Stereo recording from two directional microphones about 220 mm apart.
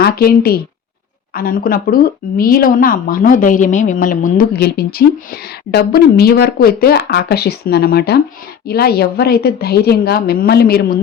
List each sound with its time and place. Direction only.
0.0 s a woman's voice: 45° left (ahead or behind)